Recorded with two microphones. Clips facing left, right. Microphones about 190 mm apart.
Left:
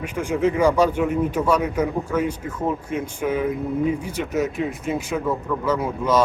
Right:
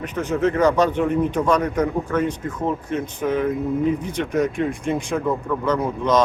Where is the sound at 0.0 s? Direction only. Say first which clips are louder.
Even; 10° left (ahead or behind).